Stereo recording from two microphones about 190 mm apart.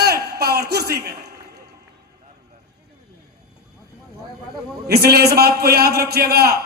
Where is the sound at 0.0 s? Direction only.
55° right (ahead or behind).